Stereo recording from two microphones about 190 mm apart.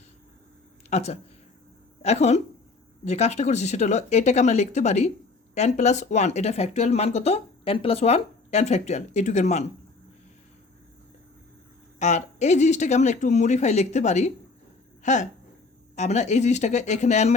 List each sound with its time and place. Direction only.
0.9 s speech: 35° left (ahead or behind)
11.9 s speech: 40° left (ahead or behind)